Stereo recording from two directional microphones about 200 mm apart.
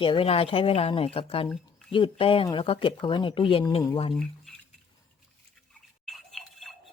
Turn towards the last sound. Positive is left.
turn(degrees=0)  # may be behind; listen again after turning